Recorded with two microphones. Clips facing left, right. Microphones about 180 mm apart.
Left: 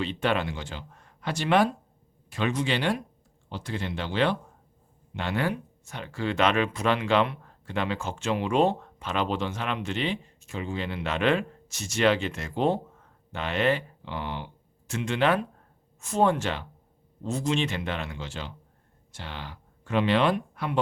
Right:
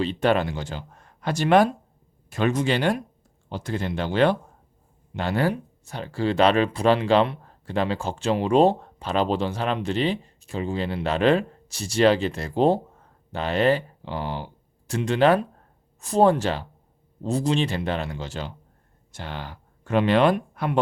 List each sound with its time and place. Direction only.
0.0 s speech: 40° right (ahead or behind)